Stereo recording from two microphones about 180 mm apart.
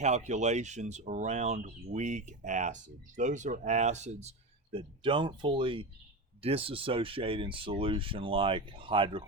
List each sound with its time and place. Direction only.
0.0 s speech: 40° right (ahead or behind)